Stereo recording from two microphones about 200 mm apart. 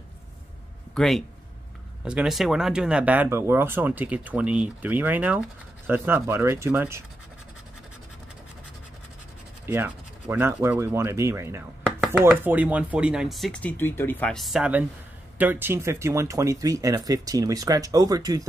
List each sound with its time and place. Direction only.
0.9 s speech: centre (ahead or behind)
9.7 s speech: 10° right (ahead or behind)